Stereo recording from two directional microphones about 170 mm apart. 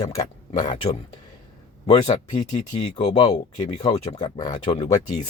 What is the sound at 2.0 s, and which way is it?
Speech, 45° left (ahead or behind).